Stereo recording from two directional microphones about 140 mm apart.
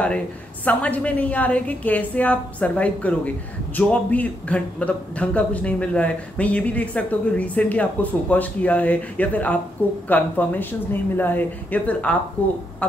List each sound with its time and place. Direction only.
0.7 s a woman's voice: 10° left (ahead or behind)